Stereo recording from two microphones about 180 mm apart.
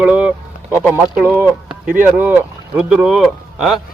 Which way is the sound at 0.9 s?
5° right (ahead or behind).